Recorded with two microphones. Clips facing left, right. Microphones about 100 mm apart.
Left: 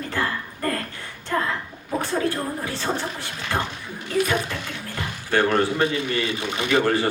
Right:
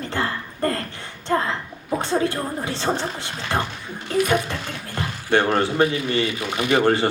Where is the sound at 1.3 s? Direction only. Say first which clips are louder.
Right 3 dB; 35° right (ahead or behind).